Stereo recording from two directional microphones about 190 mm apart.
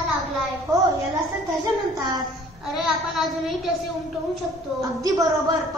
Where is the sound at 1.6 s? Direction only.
20° right (ahead or behind).